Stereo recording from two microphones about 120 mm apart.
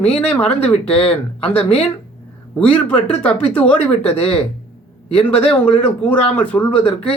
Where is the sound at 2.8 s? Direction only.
10° left (ahead or behind).